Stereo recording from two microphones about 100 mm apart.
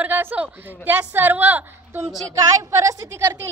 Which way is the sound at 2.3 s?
30° right (ahead or behind).